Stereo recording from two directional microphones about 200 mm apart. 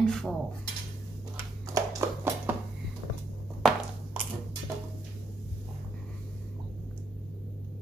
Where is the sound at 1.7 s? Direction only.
15° right (ahead or behind).